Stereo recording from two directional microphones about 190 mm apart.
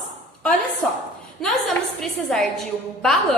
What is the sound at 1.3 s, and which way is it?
A woman's voice, centre (ahead or behind).